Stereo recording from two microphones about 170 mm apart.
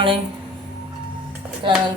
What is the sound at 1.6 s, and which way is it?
Speech, 30° right (ahead or behind).